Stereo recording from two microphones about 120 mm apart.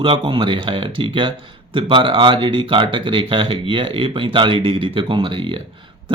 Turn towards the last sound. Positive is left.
turn(degrees=-45)  # may be behind; listen again after turning